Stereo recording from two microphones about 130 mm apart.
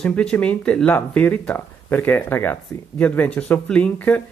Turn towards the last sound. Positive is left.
turn(degrees=10)  # may be behind; listen again after turning